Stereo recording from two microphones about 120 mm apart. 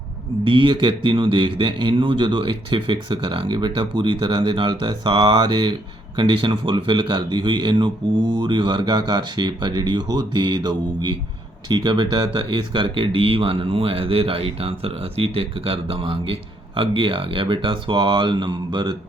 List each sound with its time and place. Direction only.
0.4 s a man's voice: 45° right (ahead or behind)